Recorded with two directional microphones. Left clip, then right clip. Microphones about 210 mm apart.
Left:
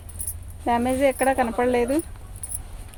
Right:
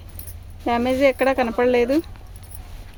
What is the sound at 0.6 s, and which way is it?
Speech, 45° right (ahead or behind).